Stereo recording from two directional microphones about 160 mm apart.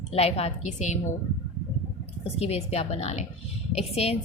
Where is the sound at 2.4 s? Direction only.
40° left (ahead or behind).